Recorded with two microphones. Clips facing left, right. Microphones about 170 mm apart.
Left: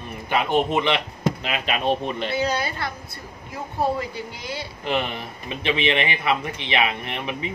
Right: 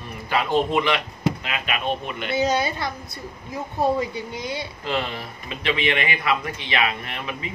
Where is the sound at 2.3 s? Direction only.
20° right (ahead or behind).